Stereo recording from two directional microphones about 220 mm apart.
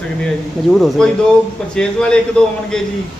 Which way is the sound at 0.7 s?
Centre (ahead or behind).